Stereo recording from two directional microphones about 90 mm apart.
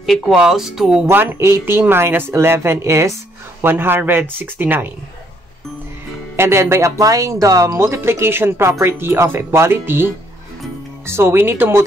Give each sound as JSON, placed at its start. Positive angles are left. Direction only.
{"t": 0.0, "sound": "speech", "side_deg": 0}
{"t": 1.0, "sound": "speech", "side_deg": -30}
{"t": 6.3, "sound": "speech", "side_deg": -30}